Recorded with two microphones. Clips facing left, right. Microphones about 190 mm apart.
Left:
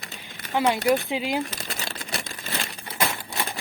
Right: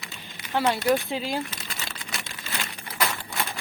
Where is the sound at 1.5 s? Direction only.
40° left (ahead or behind).